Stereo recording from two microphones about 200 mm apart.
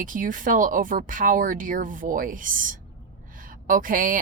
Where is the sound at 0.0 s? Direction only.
40° right (ahead or behind).